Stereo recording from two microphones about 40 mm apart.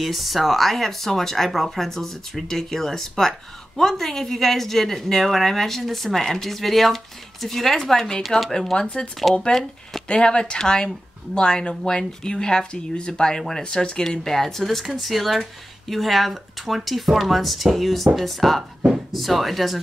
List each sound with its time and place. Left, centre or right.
0.0 s speech: centre
8.7 s speech: left
9.4 s speech: centre
10.0 s speech: left; by 19.8 s centre